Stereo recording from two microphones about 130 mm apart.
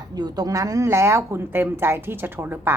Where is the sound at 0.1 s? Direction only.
30° right (ahead or behind).